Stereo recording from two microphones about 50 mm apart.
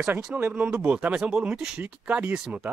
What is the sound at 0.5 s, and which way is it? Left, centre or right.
Speech, right.